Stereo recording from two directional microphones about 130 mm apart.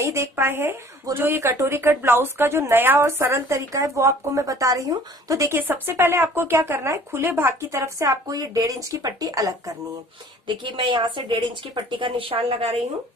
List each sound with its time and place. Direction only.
0.0 s a woman's voice: 20° right (ahead or behind)
10.4 s speech: 40° right (ahead or behind)